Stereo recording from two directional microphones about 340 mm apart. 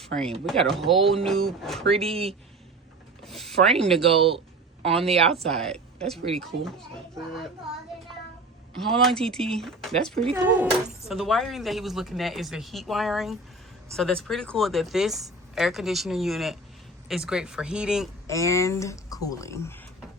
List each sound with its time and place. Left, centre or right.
0.0 s speech: centre
1.9 s speech: centre
3.2 s speech: centre
5.0 s speech: centre
5.5 s speech: centre
8.9 s speech: centre
18.3 s speech: centre